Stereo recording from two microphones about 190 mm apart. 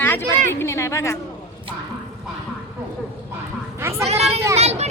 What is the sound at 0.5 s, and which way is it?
Speech, 15° left (ahead or behind).